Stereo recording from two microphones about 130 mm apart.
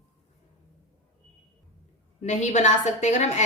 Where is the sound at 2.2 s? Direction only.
65° left (ahead or behind).